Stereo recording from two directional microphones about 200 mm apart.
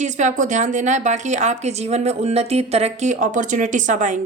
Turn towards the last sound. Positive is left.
turn(degrees=-40)  # may be behind; listen again after turning